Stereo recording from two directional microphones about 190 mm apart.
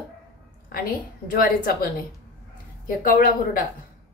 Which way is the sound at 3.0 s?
50° left (ahead or behind).